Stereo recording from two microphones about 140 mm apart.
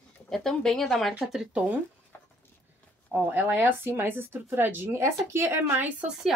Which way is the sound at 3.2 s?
15° right (ahead or behind).